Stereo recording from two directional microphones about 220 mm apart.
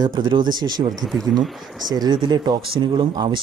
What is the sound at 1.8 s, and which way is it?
Speech, 20° right (ahead or behind).